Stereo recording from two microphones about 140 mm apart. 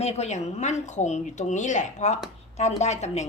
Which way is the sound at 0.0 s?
50° left (ahead or behind).